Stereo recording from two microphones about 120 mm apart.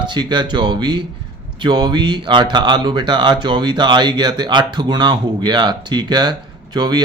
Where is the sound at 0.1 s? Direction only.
40° right (ahead or behind).